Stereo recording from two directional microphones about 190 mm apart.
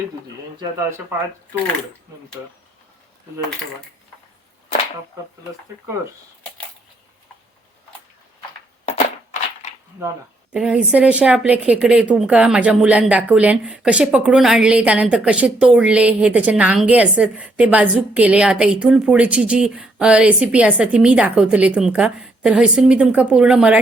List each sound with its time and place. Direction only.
0.6 s speech: 15° right (ahead or behind)
8.9 s a sound: 35° left (ahead or behind)
10.5 s speech: 5° right (ahead or behind)